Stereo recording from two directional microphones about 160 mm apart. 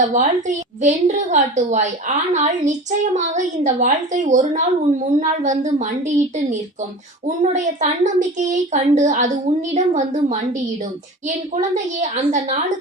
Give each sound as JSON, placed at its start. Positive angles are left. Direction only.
{"t": 0.0, "sound": "a woman's voice", "side_deg": -50}